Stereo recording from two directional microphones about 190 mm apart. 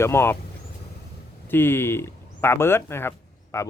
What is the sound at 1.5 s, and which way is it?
Speech, 10° left (ahead or behind).